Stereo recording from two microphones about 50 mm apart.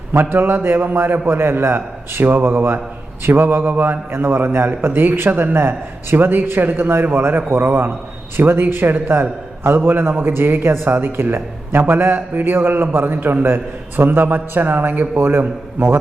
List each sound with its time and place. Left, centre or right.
0.1 s a man's voice: right